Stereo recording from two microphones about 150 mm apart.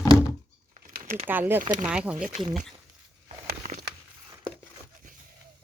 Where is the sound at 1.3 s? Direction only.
15° right (ahead or behind).